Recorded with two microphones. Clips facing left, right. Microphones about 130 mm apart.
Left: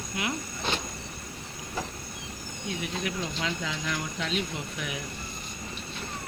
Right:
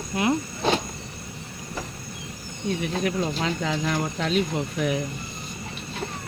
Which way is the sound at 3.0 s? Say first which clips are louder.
Right 7 dB; 45° right (ahead or behind).